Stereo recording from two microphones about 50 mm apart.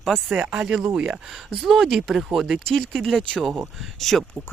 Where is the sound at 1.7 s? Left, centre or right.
Centre.